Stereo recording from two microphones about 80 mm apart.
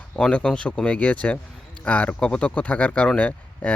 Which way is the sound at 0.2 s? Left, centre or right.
Centre.